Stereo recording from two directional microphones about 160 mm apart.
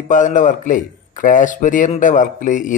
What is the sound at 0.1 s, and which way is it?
A man's voice, 50° left (ahead or behind).